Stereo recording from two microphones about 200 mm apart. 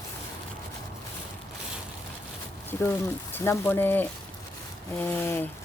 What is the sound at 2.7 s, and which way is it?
Speech, 10° left (ahead or behind).